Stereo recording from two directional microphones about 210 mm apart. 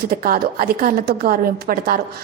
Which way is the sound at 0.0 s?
45° right (ahead or behind).